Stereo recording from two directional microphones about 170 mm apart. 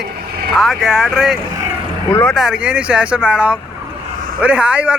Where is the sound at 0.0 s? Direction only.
65° right (ahead or behind).